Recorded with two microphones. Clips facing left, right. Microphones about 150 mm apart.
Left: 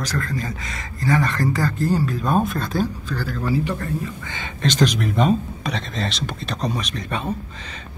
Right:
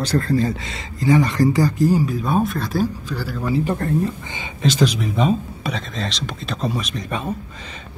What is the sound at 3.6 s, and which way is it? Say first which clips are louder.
Speech: right 4 dB; 50° right (ahead or behind).